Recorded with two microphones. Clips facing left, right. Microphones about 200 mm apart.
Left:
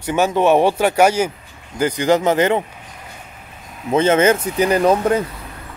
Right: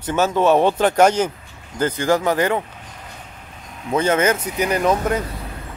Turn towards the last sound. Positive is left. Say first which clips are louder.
# left 4 dB
turn(degrees=30)  # may be behind; listen again after turning